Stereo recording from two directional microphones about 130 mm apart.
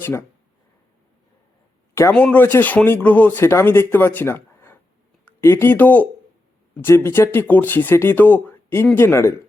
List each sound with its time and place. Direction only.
0.0 s speech: 20° left (ahead or behind)
2.1 s speech: 10° left (ahead or behind)